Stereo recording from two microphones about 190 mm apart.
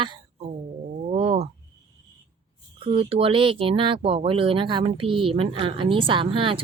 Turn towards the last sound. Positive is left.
turn(degrees=-25)  # may be behind; listen again after turning